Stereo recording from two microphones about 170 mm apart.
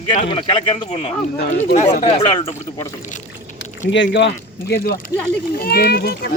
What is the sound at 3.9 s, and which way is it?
Speech, 90° left.